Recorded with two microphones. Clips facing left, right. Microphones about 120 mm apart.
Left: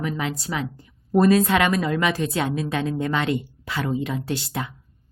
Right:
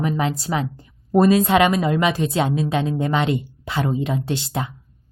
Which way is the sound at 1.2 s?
20° right (ahead or behind).